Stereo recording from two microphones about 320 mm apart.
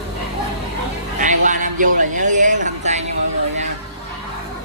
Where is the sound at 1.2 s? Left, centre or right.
Right.